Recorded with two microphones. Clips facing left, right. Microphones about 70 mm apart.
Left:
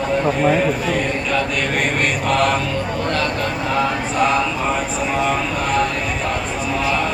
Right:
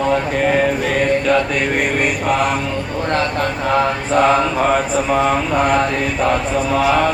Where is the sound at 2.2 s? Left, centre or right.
Centre.